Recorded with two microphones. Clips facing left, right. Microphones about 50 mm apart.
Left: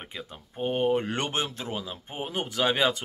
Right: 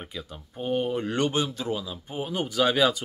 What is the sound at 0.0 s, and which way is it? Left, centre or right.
Speech, left.